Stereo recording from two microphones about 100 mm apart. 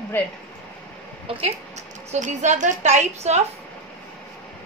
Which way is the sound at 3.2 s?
90° right.